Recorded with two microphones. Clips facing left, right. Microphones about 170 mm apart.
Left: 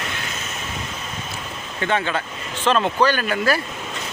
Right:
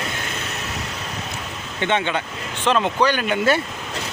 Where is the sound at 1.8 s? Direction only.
20° right (ahead or behind).